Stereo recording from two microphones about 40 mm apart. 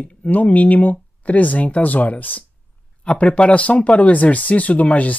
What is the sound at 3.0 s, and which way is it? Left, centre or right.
Speech, left.